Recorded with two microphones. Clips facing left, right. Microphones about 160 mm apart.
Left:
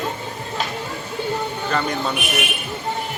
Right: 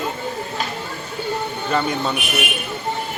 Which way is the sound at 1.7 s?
5° right (ahead or behind).